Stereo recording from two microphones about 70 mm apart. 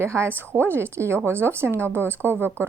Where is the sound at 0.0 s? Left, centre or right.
Right.